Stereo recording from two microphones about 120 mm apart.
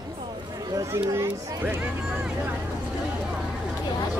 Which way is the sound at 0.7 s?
25° right (ahead or behind).